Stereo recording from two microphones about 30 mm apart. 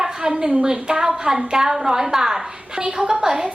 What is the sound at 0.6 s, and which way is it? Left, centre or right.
A woman's voice, right.